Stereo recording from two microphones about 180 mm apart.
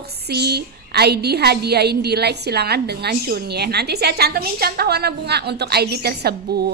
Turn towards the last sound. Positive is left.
turn(degrees=-60)  # may be behind; listen again after turning